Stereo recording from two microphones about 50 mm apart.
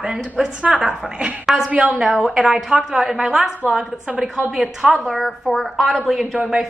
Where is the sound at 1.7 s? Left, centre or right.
Right.